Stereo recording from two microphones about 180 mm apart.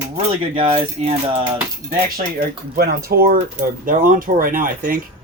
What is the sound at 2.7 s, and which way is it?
Speech, 55° right (ahead or behind).